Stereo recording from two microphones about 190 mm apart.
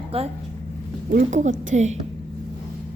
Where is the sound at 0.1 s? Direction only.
30° right (ahead or behind).